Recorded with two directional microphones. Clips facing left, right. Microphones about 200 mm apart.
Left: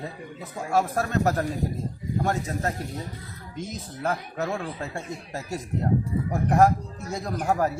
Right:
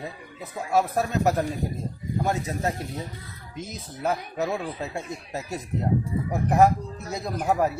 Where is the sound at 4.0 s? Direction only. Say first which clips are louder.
Right 2 dB; 10° right (ahead or behind).